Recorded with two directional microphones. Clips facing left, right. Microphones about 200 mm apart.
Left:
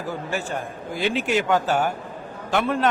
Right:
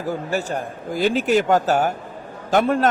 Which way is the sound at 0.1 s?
40° right (ahead or behind).